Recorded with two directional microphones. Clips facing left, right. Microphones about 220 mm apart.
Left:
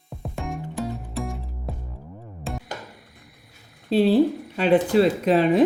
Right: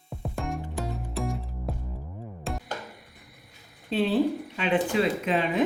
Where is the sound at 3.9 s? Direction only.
35° left (ahead or behind).